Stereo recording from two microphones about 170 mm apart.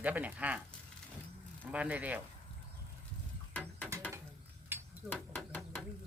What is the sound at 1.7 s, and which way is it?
Speech, 10° right (ahead or behind).